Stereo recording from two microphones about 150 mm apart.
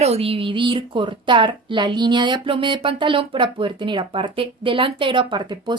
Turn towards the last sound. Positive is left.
turn(degrees=-30)  # may be behind; listen again after turning